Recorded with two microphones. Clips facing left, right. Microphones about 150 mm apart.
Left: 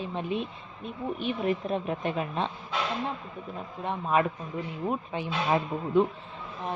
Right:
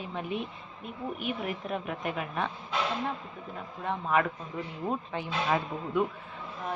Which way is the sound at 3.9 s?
20° left (ahead or behind).